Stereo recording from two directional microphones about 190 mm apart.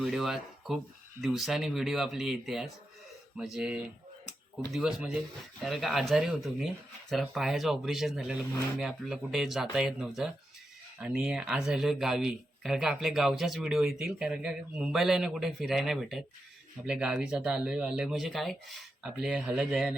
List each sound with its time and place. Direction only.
0.0 s speech: centre (ahead or behind)